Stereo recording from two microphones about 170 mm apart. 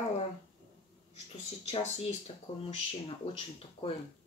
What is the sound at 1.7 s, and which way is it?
Speech, 35° left (ahead or behind).